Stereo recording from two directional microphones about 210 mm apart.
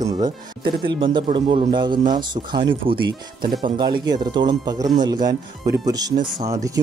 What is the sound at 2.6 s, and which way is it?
Speech, 45° right (ahead or behind).